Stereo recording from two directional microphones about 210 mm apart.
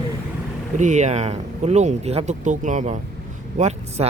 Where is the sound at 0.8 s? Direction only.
35° right (ahead or behind).